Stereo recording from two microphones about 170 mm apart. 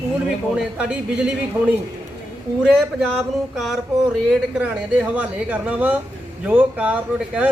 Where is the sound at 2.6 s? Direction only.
Centre (ahead or behind).